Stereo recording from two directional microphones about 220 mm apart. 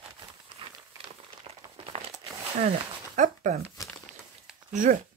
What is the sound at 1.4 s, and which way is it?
Crumpling, 25° right (ahead or behind).